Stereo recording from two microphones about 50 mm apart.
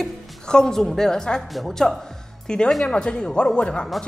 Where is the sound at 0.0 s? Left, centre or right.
Centre.